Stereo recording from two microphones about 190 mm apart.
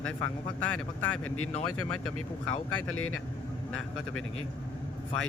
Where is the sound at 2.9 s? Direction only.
90° left.